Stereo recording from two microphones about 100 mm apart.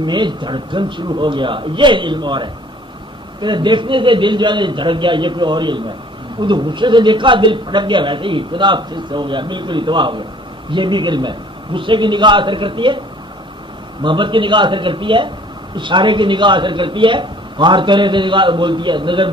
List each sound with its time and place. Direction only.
0.0 s a man's voice: 50° right (ahead or behind)
14.0 s a man's voice: 55° right (ahead or behind)